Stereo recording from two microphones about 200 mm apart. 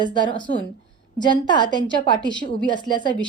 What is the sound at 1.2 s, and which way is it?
A woman's voice, 20° left (ahead or behind).